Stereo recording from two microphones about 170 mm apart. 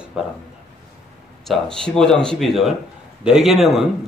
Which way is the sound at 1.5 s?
Centre (ahead or behind).